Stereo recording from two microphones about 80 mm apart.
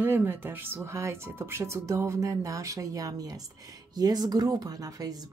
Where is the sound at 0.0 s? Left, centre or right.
Right.